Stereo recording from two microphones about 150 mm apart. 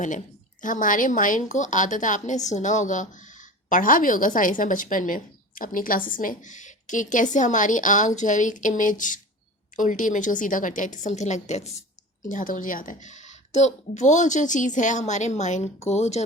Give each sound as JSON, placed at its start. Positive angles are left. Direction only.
{"t": 0.6, "sound": "a woman's voice", "side_deg": 60}
{"t": 12.3, "sound": "a woman's voice", "side_deg": 60}